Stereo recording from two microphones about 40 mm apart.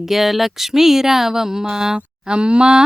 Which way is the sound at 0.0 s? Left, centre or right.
Centre.